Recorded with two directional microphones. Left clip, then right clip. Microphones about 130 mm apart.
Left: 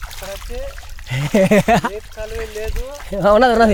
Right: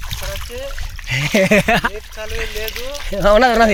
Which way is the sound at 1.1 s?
40° left (ahead or behind).